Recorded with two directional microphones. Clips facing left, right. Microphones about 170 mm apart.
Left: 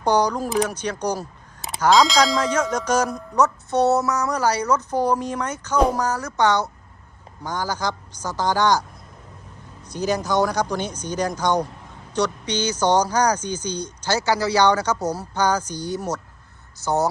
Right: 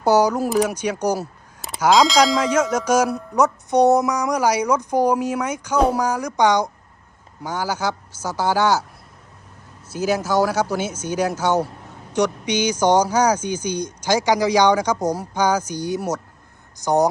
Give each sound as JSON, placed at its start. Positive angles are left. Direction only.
{"t": 0.0, "sound": "speech", "side_deg": -10}
{"t": 9.9, "sound": "speech", "side_deg": -5}